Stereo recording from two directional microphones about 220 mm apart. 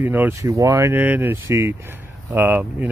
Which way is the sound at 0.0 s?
10° right (ahead or behind).